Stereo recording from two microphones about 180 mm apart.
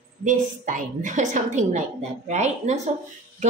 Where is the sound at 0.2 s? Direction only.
45° right (ahead or behind).